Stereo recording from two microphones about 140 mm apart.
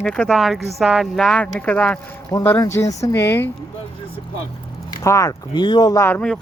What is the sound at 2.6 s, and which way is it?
Speech, 20° left (ahead or behind).